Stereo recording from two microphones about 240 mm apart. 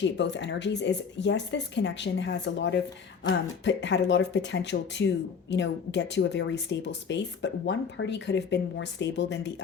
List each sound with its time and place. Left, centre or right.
0.0 s speech: left